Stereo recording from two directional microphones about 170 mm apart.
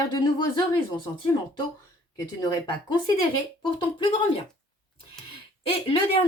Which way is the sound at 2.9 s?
25° left (ahead or behind).